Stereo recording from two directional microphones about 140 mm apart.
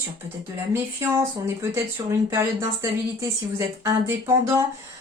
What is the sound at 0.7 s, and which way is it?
Speech, 20° right (ahead or behind).